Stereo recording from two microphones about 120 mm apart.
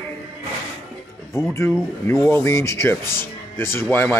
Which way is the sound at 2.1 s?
25° left (ahead or behind).